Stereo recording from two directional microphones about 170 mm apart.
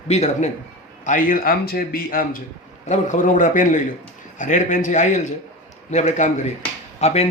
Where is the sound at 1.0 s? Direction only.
55° left (ahead or behind).